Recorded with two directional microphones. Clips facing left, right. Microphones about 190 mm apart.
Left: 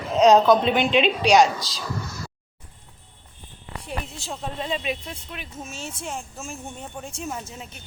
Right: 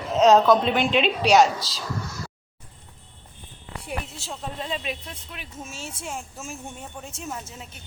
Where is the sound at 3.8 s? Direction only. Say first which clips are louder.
Even; 5° right (ahead or behind).